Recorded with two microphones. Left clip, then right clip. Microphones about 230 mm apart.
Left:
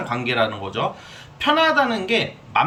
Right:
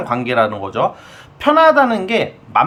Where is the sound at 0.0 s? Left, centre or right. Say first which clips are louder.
Right 5 dB; centre.